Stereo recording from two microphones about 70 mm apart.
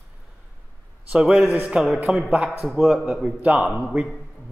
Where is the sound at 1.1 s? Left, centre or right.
Centre.